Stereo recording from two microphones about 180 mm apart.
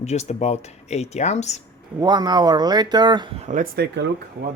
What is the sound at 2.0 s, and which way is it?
Speech, 25° right (ahead or behind).